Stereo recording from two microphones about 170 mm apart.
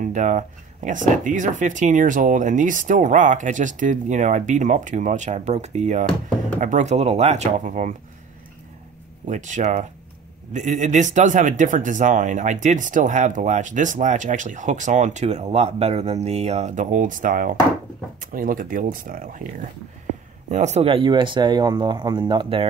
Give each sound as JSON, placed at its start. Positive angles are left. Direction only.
{"t": 0.0, "sound": "speech", "side_deg": -45}
{"t": 9.3, "sound": "speech", "side_deg": -45}
{"t": 20.4, "sound": "speech", "side_deg": -45}